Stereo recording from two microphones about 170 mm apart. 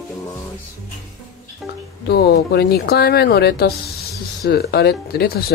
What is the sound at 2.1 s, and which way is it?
Speech, 75° left (ahead or behind).